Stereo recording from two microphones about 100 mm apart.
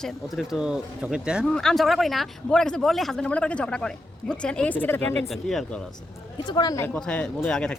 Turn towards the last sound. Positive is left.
turn(degrees=10)  # may be behind; listen again after turning